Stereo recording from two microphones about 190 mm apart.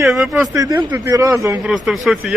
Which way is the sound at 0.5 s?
15° right (ahead or behind).